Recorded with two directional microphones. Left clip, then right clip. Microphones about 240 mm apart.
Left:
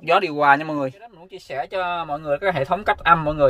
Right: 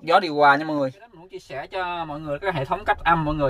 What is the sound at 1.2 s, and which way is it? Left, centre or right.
Speech, left.